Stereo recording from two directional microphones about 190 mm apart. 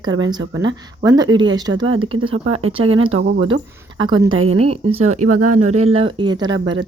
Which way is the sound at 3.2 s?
70° right (ahead or behind).